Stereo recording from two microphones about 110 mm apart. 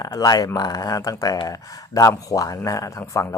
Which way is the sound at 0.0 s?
35° left (ahead or behind).